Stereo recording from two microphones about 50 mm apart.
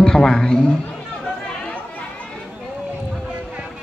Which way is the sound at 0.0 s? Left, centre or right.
Centre.